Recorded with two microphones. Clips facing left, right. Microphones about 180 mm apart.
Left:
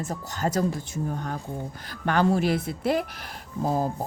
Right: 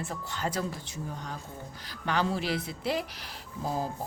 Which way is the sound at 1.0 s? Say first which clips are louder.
Left 7 dB; 55° left (ahead or behind).